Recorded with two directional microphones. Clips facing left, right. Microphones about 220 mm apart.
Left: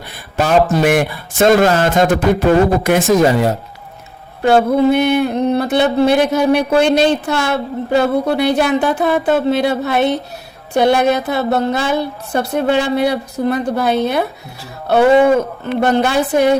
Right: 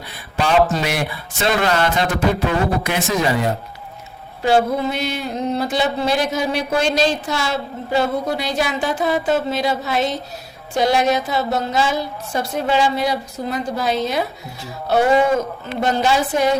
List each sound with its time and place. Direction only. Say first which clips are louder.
0.3 s a man's voice: left 4 dB; 45° left (ahead or behind)
4.4 s speech: left 6 dB; 60° left (ahead or behind)
15.6 s speech: left 5 dB; 60° left (ahead or behind)